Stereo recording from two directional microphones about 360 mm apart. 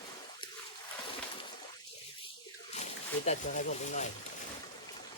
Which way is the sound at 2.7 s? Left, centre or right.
Centre.